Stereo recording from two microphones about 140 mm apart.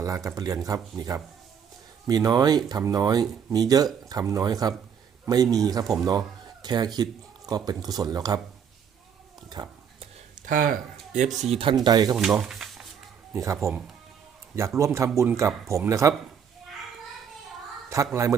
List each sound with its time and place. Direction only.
0.0 s speech: 20° right (ahead or behind)
10.4 s speech: 85° right
11.3 s speech: 45° right (ahead or behind); by 12.1 s 30° right (ahead or behind)
12.1 s speech: 5° right (ahead or behind)
13.3 s speech: 20° right (ahead or behind)
14.8 s speech: 20° right (ahead or behind)
17.8 s a man's voice: 20° right (ahead or behind)